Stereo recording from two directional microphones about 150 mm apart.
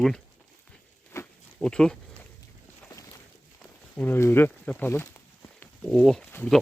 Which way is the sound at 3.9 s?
15° left (ahead or behind).